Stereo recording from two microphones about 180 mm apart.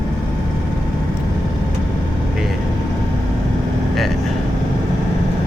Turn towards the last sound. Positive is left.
turn(degrees=0)  # may be behind; listen again after turning